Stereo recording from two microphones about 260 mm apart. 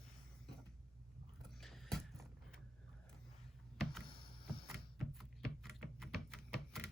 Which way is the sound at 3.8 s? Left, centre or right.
Centre.